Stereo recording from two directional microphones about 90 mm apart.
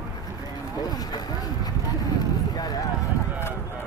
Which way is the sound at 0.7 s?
45° left (ahead or behind).